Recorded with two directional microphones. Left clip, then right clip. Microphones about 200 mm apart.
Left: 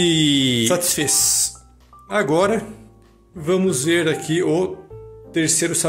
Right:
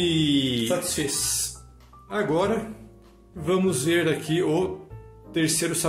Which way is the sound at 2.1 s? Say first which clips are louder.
Left 6 dB; 35° left (ahead or behind).